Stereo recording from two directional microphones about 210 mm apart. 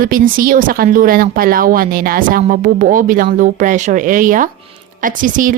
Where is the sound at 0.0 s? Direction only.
40° right (ahead or behind).